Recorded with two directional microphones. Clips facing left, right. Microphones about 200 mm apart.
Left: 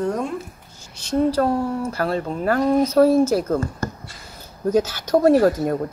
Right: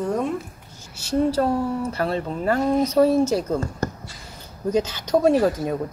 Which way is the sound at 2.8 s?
Centre (ahead or behind).